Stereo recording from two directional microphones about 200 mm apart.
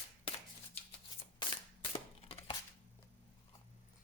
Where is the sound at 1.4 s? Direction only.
25° left (ahead or behind).